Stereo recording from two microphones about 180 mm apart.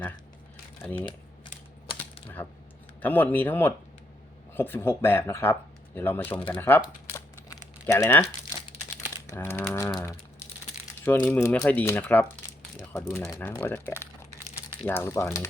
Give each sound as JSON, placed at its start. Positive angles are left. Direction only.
{"t": 0.8, "sound": "speech", "side_deg": 10}
{"t": 3.0, "sound": "speech", "side_deg": 10}
{"t": 7.9, "sound": "speech", "side_deg": 15}
{"t": 9.2, "sound": "speech", "side_deg": 15}